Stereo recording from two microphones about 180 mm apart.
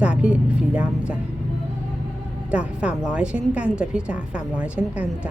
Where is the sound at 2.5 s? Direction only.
5° right (ahead or behind).